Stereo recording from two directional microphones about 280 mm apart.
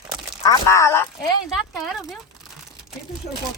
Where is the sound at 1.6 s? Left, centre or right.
Centre.